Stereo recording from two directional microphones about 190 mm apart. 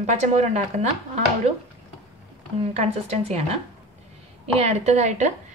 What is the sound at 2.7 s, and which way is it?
Speech, 35° right (ahead or behind).